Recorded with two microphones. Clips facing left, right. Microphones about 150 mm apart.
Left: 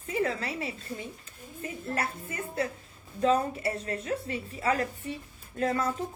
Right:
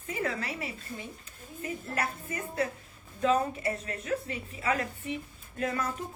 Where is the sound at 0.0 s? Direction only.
30° left (ahead or behind).